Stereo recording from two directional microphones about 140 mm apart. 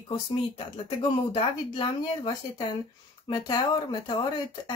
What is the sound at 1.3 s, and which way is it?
Speech, 35° left (ahead or behind).